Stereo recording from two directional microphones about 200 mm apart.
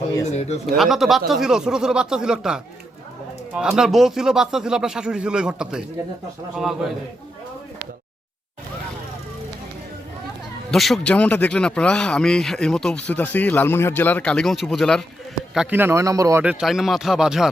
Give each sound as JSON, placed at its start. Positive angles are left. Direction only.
{"t": 0.3, "sound": "speech", "side_deg": 35}
{"t": 0.8, "sound": "speech", "side_deg": 0}
{"t": 10.7, "sound": "a man's voice", "side_deg": 0}
{"t": 16.4, "sound": "speech", "side_deg": -5}